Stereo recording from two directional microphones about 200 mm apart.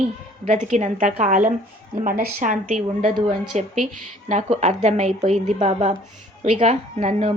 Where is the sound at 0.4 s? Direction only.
35° right (ahead or behind).